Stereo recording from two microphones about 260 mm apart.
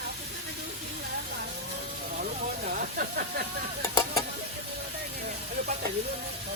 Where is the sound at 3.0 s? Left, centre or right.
Right.